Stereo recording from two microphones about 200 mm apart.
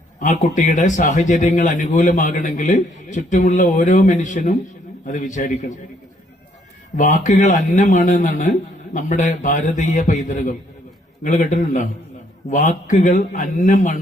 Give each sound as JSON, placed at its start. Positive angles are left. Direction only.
{"t": 0.5, "sound": "a man's voice", "side_deg": 40}
{"t": 6.9, "sound": "a man's voice", "side_deg": 40}